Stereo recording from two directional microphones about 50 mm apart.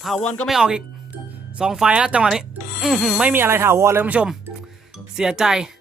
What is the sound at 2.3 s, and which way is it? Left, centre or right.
Music, centre.